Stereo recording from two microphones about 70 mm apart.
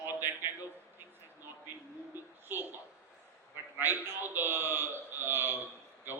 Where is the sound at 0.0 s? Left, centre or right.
Right.